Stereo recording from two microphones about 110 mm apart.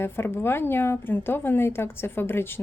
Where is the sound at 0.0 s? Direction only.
20° left (ahead or behind).